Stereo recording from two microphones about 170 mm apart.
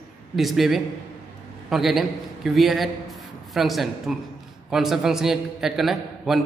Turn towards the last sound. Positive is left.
turn(degrees=0)  # may be behind; listen again after turning